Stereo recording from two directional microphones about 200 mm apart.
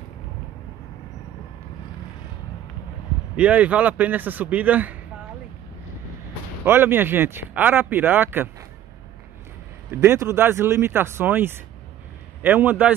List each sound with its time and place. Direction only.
3.3 s speech: 5° right (ahead or behind)
6.6 s speech: 10° right (ahead or behind)
9.8 s speech: 15° right (ahead or behind)